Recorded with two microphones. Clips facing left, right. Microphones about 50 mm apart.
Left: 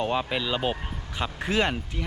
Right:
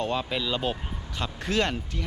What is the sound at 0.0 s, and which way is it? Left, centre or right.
Speech, centre.